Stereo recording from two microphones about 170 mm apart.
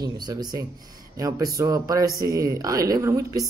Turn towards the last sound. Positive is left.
turn(degrees=-20)  # may be behind; listen again after turning